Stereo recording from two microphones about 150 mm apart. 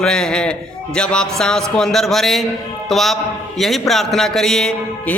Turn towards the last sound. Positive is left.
turn(degrees=5)  # may be behind; listen again after turning